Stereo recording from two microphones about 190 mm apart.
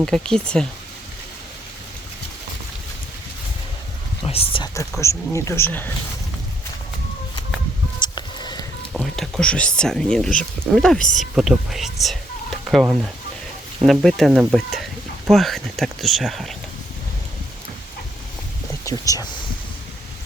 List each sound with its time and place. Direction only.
0.0 s speech: 5° left (ahead or behind)
4.2 s speech: 30° left (ahead or behind)
4.9 s speech: 15° left (ahead or behind)
8.0 s a sound: 25° left (ahead or behind)
8.9 s speech: centre (ahead or behind)
18.9 s speech: 20° left (ahead or behind)